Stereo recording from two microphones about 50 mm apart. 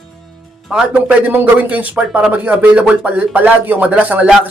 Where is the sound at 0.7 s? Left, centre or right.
Centre.